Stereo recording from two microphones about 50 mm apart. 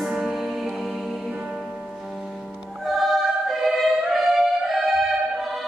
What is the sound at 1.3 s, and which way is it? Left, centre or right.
Music, centre.